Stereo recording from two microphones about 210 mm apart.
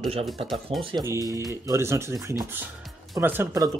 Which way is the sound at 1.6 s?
15° right (ahead or behind).